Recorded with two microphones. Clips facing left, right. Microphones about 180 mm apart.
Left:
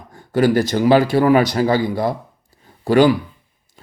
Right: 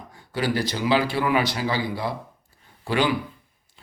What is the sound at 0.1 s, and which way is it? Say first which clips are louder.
A man's voice: left 10 dB; 50° left (ahead or behind).